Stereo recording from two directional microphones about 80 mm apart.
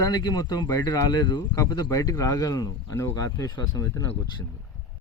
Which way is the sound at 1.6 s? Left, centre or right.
Left.